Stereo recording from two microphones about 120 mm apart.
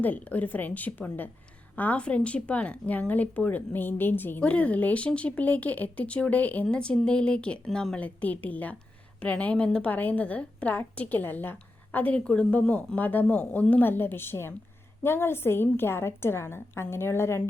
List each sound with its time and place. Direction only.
0.0 s a woman's voice: 15° left (ahead or behind)